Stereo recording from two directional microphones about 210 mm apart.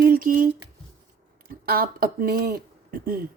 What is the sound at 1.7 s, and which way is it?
Speech, 45° right (ahead or behind).